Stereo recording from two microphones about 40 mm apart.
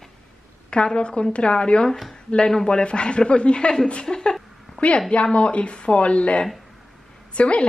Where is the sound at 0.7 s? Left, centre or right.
Left.